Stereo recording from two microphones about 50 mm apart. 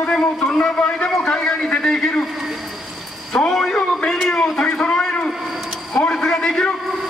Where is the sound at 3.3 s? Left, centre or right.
Centre.